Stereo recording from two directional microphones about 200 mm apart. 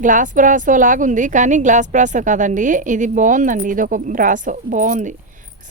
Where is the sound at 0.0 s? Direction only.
40° right (ahead or behind).